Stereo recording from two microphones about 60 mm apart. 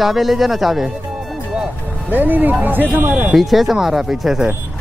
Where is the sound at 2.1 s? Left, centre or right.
Right.